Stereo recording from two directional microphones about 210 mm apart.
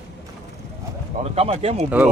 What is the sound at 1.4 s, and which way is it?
Speech, 30° right (ahead or behind).